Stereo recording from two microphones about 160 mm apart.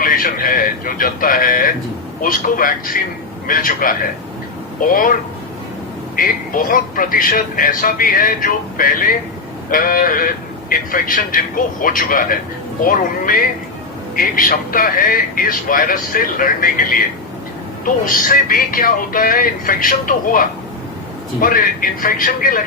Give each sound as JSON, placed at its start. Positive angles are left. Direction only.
{"t": 0.0, "sound": "speech", "side_deg": 60}
{"t": 6.1, "sound": "speech", "side_deg": 60}